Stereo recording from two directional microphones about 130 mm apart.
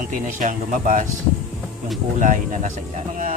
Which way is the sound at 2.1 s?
80° right.